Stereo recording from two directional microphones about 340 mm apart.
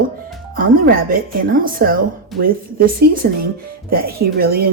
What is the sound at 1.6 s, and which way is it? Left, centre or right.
Speech, right.